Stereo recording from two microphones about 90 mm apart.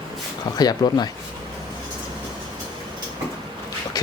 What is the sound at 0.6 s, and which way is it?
Speech, 50° left (ahead or behind).